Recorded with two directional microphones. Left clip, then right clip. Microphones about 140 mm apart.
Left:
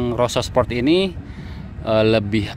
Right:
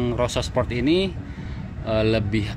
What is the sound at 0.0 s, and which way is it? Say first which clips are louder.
Speech: left 4 dB; 35° left (ahead or behind).